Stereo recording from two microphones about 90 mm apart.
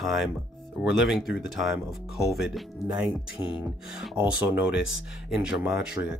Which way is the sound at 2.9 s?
15° right (ahead or behind).